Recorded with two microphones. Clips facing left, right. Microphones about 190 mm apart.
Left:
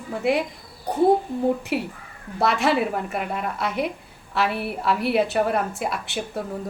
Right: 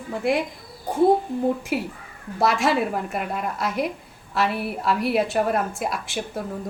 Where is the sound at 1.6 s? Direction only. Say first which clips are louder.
Even; centre (ahead or behind).